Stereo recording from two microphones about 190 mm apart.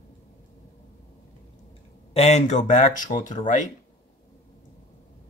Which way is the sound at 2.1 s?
35° left (ahead or behind).